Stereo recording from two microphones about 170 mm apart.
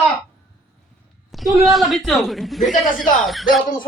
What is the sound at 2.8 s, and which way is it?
Speech, 50° left (ahead or behind).